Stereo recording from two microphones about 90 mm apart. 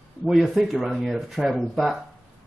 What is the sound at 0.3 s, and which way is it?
Speech, centre (ahead or behind).